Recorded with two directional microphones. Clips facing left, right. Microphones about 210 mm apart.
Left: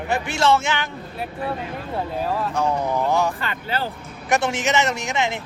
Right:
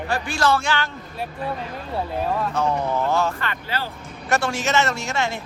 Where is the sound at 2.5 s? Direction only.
10° left (ahead or behind).